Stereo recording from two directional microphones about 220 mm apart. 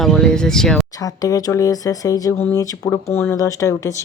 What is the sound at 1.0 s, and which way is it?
Speech, 15° left (ahead or behind).